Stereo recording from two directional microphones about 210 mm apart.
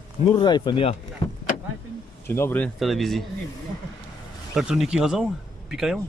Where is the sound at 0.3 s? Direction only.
20° left (ahead or behind).